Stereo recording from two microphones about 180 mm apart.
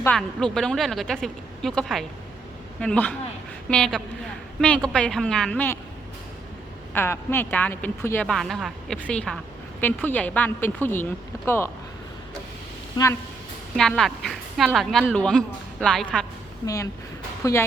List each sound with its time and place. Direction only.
0.0 s a woman's voice: 5° left (ahead or behind)
6.9 s a woman's voice: 15° left (ahead or behind)
12.9 s speech: 20° left (ahead or behind)
13.7 s speech: 5° left (ahead or behind)
16.6 s a woman's voice: 15° left (ahead or behind)